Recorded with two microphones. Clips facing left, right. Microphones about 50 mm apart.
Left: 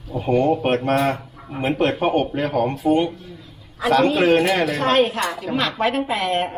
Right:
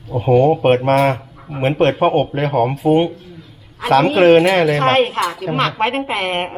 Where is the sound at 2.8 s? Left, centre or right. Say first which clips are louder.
Right 4 dB; right.